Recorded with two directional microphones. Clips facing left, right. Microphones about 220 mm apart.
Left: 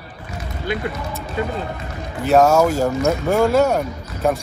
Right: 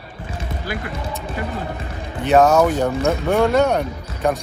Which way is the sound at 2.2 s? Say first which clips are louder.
Even; centre (ahead or behind).